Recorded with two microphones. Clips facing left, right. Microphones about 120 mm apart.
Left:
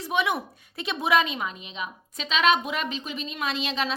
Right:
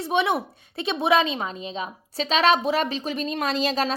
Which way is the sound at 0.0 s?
25° right (ahead or behind).